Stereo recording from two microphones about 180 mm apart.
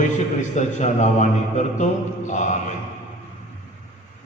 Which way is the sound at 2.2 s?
40° left (ahead or behind).